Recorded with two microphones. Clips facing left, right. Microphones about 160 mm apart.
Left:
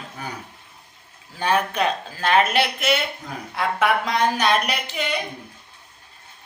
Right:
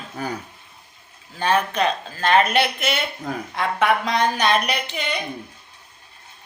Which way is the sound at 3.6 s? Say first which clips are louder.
Even; 5° left (ahead or behind).